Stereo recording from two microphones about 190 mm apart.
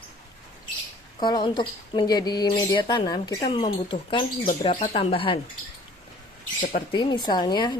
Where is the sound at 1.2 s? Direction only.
25° left (ahead or behind).